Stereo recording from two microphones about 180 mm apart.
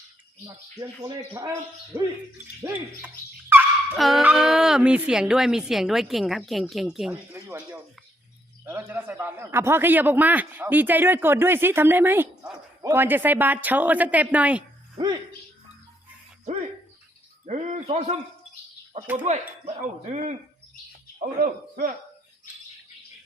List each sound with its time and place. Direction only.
0.4 s a man's voice: 20° right (ahead or behind)
2.6 s a man's voice: 15° right (ahead or behind)
3.9 s a woman's voice: centre (ahead or behind)
14.9 s speech: 25° right (ahead or behind)
17.4 s cricket: 40° right (ahead or behind)
19.1 s speech: 40° right (ahead or behind)